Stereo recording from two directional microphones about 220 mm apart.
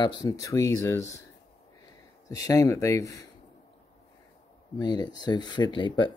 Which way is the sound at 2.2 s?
15° left (ahead or behind).